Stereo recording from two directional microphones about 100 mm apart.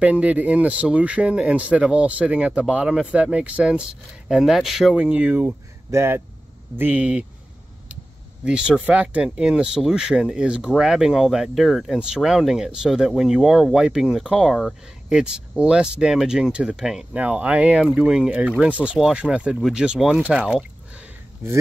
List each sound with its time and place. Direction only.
0.0 s speech: 15° right (ahead or behind)
6.8 s speech: 15° right (ahead or behind)
8.5 s speech: 10° right (ahead or behind)
21.4 s speech: 20° right (ahead or behind)